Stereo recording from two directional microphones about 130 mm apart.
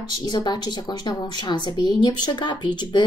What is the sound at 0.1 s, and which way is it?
Speech, 35° left (ahead or behind).